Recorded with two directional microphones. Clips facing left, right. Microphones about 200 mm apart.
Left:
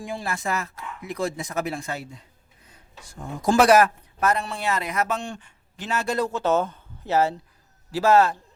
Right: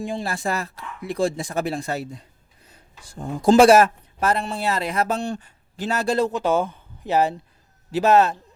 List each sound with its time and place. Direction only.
0.0 s speech: 25° right (ahead or behind)
6.3 s a man's voice: 10° right (ahead or behind)